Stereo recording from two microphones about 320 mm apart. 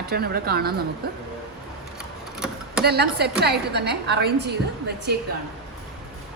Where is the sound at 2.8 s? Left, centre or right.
Right.